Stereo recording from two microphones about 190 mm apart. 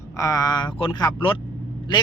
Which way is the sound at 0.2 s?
20° left (ahead or behind).